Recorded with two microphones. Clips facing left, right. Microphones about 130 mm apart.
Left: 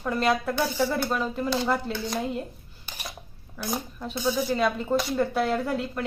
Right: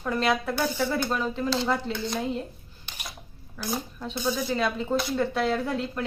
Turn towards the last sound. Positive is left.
turn(degrees=0)  # may be behind; listen again after turning